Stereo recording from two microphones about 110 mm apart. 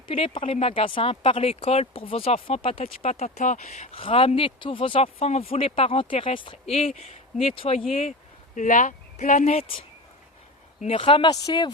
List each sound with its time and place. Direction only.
0.1 s speech: 55° left (ahead or behind); by 4.0 s 90° left
4.0 s speech: 60° left (ahead or behind)
9.1 s speech: 85° left
10.8 s speech: 60° left (ahead or behind)
11.3 s speech: 35° left (ahead or behind)